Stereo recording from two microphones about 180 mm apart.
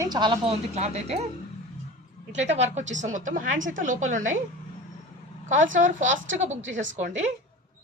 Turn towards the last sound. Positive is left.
turn(degrees=-40)  # may be behind; listen again after turning